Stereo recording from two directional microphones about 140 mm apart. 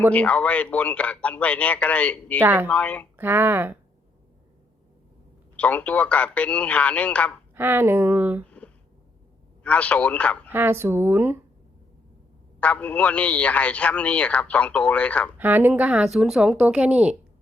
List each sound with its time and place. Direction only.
0.1 s a man's voice: 10° left (ahead or behind)
2.4 s speech: 15° right (ahead or behind)
2.6 s a man's voice: 10° left (ahead or behind)
3.2 s speech: 15° right (ahead or behind)
5.5 s a man's voice: 10° left (ahead or behind)
7.5 s speech: 15° right (ahead or behind)
8.4 s a sound: 10° left (ahead or behind)
9.6 s a man's voice: 10° left (ahead or behind)
10.5 s speech: 15° right (ahead or behind)
12.5 s a man's voice: 10° left (ahead or behind)
15.4 s speech: 15° right (ahead or behind)